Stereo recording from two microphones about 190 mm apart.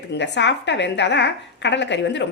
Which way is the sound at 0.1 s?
65° left (ahead or behind).